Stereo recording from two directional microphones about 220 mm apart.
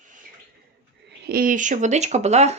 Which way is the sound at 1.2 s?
40° right (ahead or behind).